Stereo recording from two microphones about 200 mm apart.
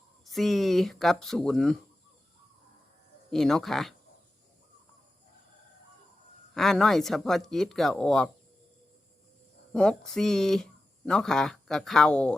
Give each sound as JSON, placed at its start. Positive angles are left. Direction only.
{"t": 0.3, "sound": "speech", "side_deg": 0}
{"t": 3.3, "sound": "speech", "side_deg": 0}
{"t": 6.5, "sound": "speech", "side_deg": 0}
{"t": 9.7, "sound": "speech", "side_deg": 5}